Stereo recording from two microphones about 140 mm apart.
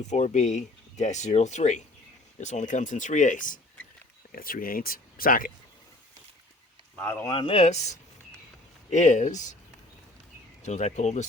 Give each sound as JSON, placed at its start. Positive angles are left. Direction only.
{"t": 0.1, "sound": "speech", "side_deg": 55}
{"t": 4.3, "sound": "speech", "side_deg": 90}
{"t": 6.9, "sound": "speech", "side_deg": 10}
{"t": 7.3, "sound": "speech", "side_deg": 45}
{"t": 10.7, "sound": "speech", "side_deg": 55}